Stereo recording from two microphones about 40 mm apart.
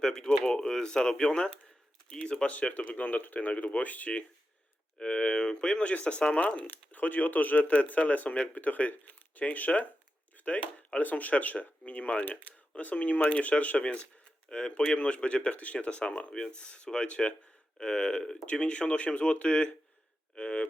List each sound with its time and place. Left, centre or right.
0.0 s speech: centre; by 4.1 s left
4.9 s speech: left
14.5 s speech: centre
14.9 s speech: left